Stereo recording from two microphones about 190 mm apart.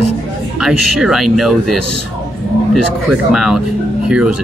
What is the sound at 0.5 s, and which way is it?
Speech, 5° right (ahead or behind).